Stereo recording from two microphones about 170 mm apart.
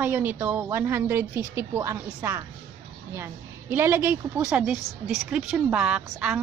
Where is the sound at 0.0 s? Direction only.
10° right (ahead or behind).